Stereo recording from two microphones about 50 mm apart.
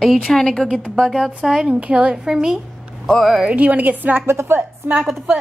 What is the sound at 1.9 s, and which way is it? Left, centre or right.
A woman's voice, centre.